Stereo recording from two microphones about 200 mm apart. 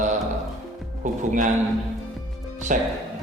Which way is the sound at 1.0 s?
40° right (ahead or behind).